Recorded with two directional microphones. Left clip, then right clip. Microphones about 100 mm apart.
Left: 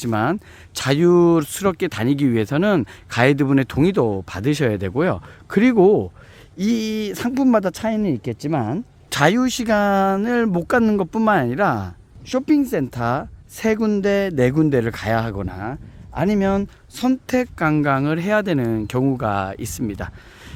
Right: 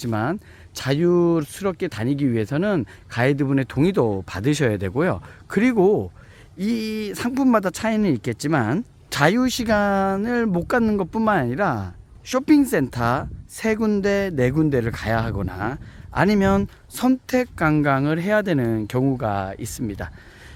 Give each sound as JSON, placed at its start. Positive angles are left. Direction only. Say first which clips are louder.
{"t": 0.0, "sound": "speech", "louder": "left 4 dB", "side_deg": 20}
{"t": 1.9, "sound": "speech", "louder": "left 4 dB", "side_deg": 35}
{"t": 3.8, "sound": "speech", "louder": "left 2 dB", "side_deg": 20}
{"t": 7.3, "sound": "speech", "louder": "left 2 dB", "side_deg": 20}
{"t": 7.9, "sound": "speech", "louder": "right 1 dB", "side_deg": 5}
{"t": 9.0, "sound": "speech", "louder": "left 2 dB", "side_deg": 15}
{"t": 12.3, "sound": "speech", "louder": "right 1 dB", "side_deg": -5}
{"t": 13.0, "sound": "speech", "louder": "even", "side_deg": 15}
{"t": 15.4, "sound": "speech", "louder": "right 2 dB", "side_deg": 0}